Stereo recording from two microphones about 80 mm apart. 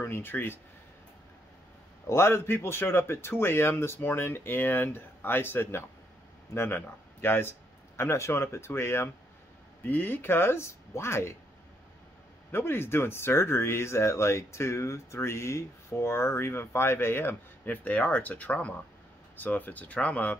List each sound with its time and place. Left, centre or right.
0.0 s speech: left
2.0 s speech: left
12.4 s speech: left